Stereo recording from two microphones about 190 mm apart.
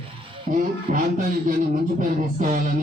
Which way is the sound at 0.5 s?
45° right (ahead or behind).